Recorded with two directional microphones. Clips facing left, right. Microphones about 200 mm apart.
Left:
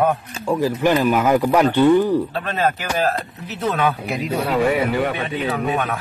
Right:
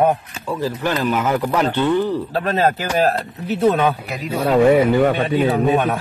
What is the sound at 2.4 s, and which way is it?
A man's voice, 35° right (ahead or behind).